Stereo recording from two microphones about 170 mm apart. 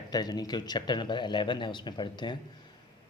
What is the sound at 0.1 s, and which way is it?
A man's voice, 25° left (ahead or behind).